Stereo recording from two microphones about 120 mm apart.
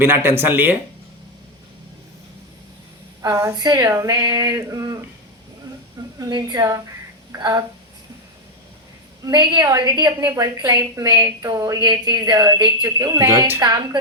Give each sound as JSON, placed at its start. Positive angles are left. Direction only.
{"t": 0.0, "sound": "speech", "side_deg": -20}
{"t": 3.2, "sound": "speech", "side_deg": -25}
{"t": 6.1, "sound": "speech", "side_deg": -35}
{"t": 9.2, "sound": "speech", "side_deg": -40}